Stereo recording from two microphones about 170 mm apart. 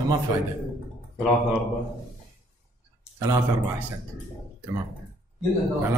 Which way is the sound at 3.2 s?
20° right (ahead or behind).